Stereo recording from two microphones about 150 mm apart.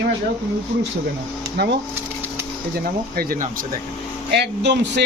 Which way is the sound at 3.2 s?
70° right (ahead or behind).